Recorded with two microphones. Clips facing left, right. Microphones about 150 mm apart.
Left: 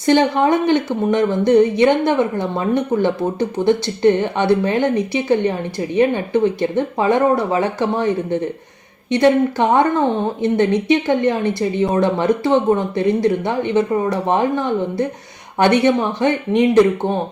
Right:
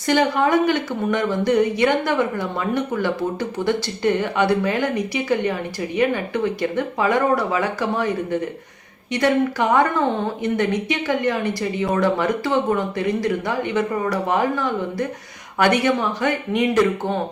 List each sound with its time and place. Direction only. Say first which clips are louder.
0.0 s speech: left 4 dB; 25° left (ahead or behind)